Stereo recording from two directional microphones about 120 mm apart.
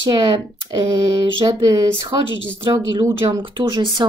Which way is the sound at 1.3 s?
40° right (ahead or behind).